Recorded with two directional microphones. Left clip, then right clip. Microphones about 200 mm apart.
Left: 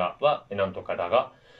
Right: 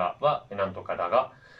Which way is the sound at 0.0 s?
10° left (ahead or behind).